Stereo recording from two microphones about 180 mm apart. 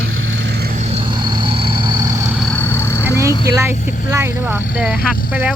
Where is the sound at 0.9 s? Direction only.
30° right (ahead or behind).